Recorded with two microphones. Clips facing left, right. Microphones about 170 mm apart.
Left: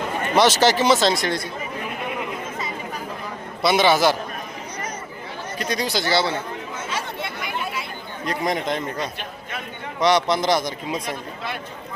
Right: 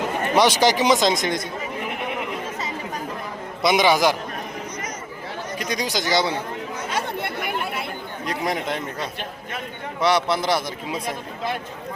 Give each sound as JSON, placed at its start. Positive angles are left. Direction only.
{"t": 0.3, "sound": "speech", "side_deg": -10}
{"t": 3.6, "sound": "speech", "side_deg": -15}
{"t": 5.5, "sound": "speech", "side_deg": -10}
{"t": 6.9, "sound": "chatter", "side_deg": -55}
{"t": 8.2, "sound": "speech", "side_deg": -10}
{"t": 10.0, "sound": "speech", "side_deg": -5}